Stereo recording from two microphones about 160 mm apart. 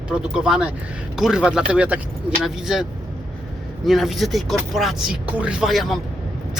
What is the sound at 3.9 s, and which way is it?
Speech, centre (ahead or behind).